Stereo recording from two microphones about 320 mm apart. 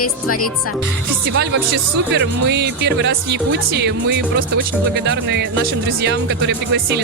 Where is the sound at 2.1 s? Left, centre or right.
Right.